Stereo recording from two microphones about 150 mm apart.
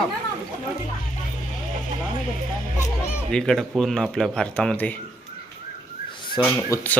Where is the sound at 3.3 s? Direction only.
5° left (ahead or behind).